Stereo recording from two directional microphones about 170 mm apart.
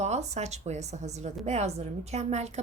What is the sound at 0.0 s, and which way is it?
A woman's voice, 40° right (ahead or behind).